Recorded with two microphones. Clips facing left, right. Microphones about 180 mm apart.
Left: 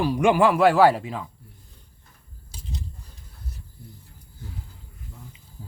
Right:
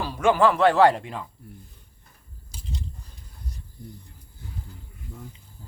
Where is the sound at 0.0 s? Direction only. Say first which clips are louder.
Left 1 dB; 15° left (ahead or behind).